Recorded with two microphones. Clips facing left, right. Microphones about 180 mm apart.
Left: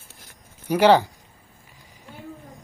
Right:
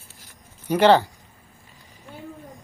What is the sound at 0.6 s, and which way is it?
Speech, 10° left (ahead or behind).